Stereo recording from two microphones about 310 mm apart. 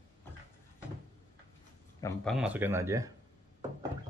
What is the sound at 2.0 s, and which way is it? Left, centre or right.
Speech, centre.